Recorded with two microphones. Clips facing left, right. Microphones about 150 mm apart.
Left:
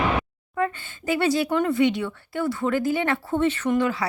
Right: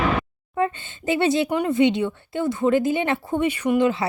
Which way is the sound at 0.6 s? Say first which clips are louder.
Right 2 dB; 25° right (ahead or behind).